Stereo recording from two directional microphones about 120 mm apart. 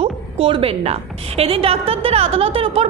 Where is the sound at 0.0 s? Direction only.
50° right (ahead or behind).